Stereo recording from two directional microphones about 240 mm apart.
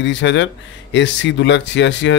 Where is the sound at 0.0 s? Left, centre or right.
Left.